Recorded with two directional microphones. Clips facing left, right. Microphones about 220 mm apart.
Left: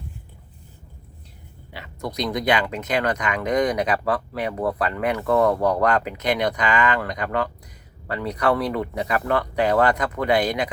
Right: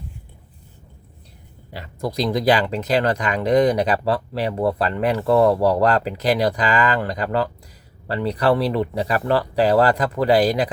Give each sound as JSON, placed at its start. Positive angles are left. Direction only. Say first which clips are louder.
{"t": 1.7, "sound": "speech", "louder": "right 4 dB", "side_deg": -35}